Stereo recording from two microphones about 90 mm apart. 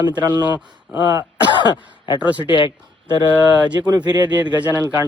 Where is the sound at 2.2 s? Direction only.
15° right (ahead or behind).